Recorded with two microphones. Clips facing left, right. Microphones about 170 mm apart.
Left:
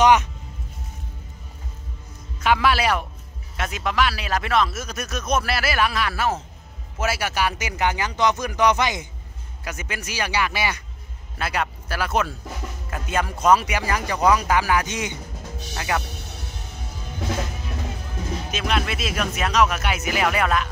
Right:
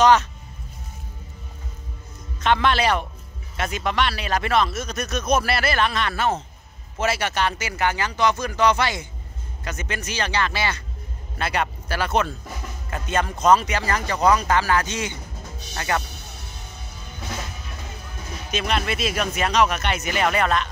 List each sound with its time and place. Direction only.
0.0 s speech: 15° left (ahead or behind)
2.4 s speech: 5° left (ahead or behind)
11.3 s speech: centre (ahead or behind)
18.5 s speech: centre (ahead or behind)